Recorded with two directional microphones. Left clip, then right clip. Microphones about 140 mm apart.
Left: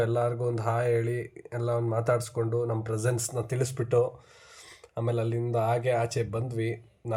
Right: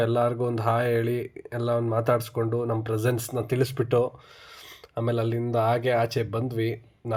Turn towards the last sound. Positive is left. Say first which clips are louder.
# right 3 dB
turn(degrees=-15)  # may be behind; listen again after turning